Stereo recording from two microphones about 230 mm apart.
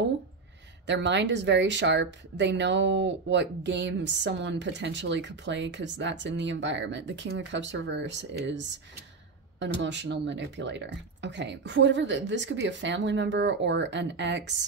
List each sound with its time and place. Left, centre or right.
0.8 s speech: right